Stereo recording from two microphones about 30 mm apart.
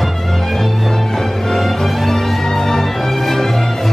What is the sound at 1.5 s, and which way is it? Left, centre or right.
Music, centre.